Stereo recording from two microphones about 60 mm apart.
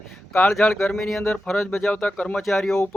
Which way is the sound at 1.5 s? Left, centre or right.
Left.